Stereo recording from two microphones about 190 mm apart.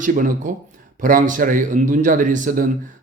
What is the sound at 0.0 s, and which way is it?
Speech, 45° right (ahead or behind).